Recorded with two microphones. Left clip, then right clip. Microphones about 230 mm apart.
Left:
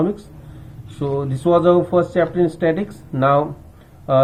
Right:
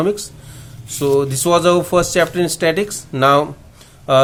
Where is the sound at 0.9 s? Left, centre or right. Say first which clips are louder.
Right 7 dB; right.